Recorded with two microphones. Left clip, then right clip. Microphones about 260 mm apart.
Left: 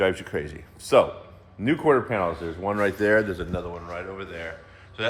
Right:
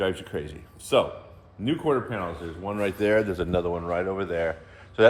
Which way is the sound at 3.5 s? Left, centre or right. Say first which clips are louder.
Right 6 dB; right.